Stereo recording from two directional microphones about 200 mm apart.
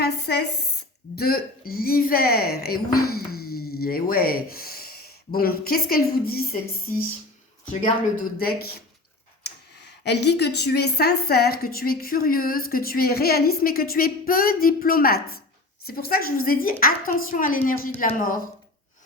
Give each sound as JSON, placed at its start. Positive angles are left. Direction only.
{"t": 0.0, "sound": "a sound", "side_deg": 55}
{"t": 1.1, "sound": "a woman's voice", "side_deg": 50}
{"t": 10.0, "sound": "a woman's voice", "side_deg": 60}